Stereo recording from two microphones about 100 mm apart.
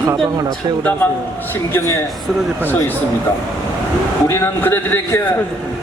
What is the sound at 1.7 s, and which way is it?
Speech, 25° left (ahead or behind).